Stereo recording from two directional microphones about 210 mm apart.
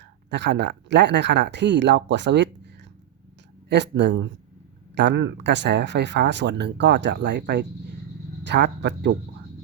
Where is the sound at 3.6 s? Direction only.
55° right (ahead or behind).